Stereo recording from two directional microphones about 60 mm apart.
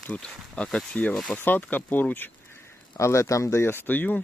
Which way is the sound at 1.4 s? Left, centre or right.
Left.